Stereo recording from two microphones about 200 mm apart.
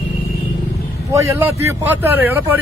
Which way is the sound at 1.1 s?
15° right (ahead or behind).